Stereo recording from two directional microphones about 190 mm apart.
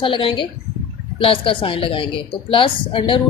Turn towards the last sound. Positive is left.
turn(degrees=25)  # may be behind; listen again after turning